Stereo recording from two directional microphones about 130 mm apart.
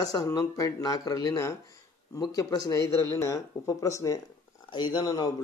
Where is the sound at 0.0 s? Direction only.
30° left (ahead or behind).